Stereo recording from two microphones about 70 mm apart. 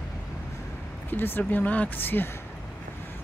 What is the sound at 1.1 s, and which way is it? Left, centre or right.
Speech, left.